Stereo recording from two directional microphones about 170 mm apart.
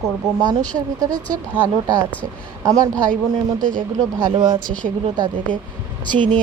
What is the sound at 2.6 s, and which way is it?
Speech, 20° right (ahead or behind).